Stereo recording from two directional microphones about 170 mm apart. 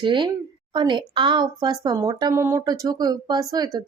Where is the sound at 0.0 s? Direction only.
30° right (ahead or behind).